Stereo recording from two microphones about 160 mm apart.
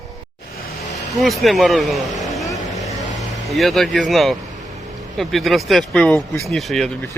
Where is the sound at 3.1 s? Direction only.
Centre (ahead or behind).